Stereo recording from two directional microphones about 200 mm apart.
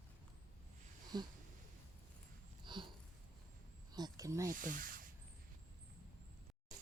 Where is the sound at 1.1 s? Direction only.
20° right (ahead or behind).